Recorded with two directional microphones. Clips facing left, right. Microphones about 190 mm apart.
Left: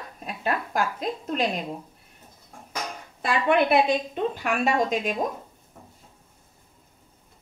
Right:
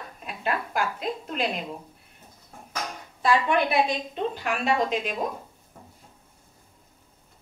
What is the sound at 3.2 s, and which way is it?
A woman's voice, 55° left (ahead or behind).